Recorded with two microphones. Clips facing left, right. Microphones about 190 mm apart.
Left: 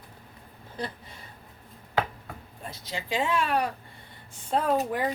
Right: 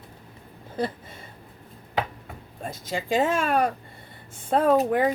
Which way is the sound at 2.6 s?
50° right (ahead or behind).